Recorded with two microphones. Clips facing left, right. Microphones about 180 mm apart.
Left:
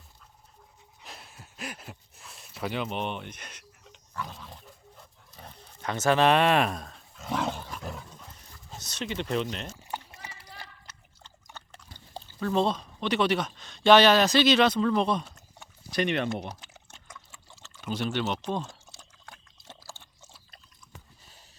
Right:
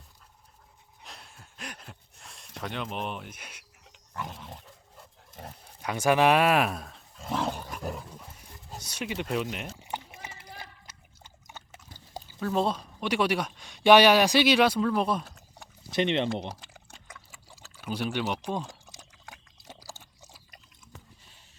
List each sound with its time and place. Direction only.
1.0 s a sound: centre (ahead or behind)
2.6 s speech: 5° left (ahead or behind)
4.1 s pig: 20° right (ahead or behind)
5.3 s dog: 50° right (ahead or behind)
5.8 s speech: 10° right (ahead or behind)
7.3 s dog: 5° right (ahead or behind)
11.4 s speech: 10° right (ahead or behind)
15.9 s speech: 25° right (ahead or behind)
16.5 s liquid: 10° right (ahead or behind)
17.6 s speech: 10° right (ahead or behind)
19.6 s a sound: 10° right (ahead or behind)